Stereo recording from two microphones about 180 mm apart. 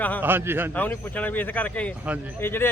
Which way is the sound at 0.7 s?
10° left (ahead or behind).